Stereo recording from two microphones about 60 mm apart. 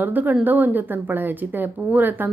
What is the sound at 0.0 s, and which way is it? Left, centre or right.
A woman's voice, right.